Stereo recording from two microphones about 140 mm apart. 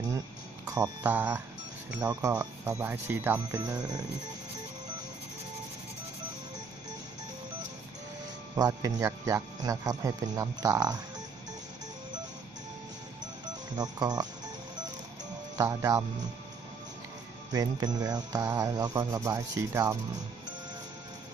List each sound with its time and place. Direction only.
0.7 s mantra: 20° right (ahead or behind)
2.0 s speech: 25° right (ahead or behind)
3.6 s speech: 25° right (ahead or behind)
8.5 s speech: 25° right (ahead or behind)
13.7 s speech: 30° right (ahead or behind)
15.5 s speech: 20° right (ahead or behind)
17.5 s speech: 30° right (ahead or behind)